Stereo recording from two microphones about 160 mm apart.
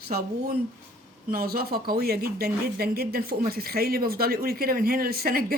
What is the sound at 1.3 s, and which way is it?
Speech, 65° right (ahead or behind).